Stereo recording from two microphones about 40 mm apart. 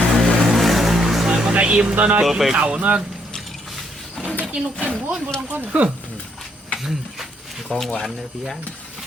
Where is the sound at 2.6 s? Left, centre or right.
Right.